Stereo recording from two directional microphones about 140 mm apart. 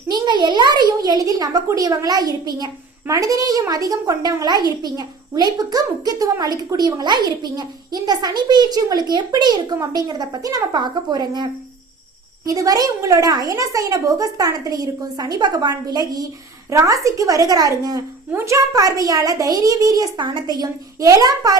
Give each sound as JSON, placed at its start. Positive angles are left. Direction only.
{"t": 0.1, "sound": "a child's voice", "side_deg": -30}
{"t": 12.5, "sound": "a child's voice", "side_deg": -25}